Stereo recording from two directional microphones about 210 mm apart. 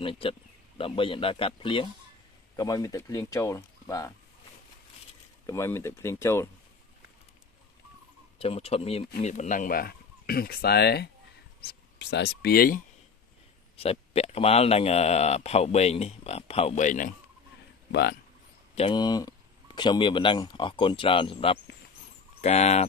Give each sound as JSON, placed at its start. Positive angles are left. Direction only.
{"t": 0.0, "sound": "speech", "side_deg": 25}
{"t": 5.5, "sound": "speech", "side_deg": 10}
{"t": 8.4, "sound": "speech", "side_deg": 30}
{"t": 13.7, "sound": "speech", "side_deg": 30}
{"t": 18.8, "sound": "speech", "side_deg": 20}